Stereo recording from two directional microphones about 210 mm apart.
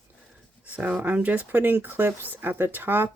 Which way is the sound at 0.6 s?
5° right (ahead or behind).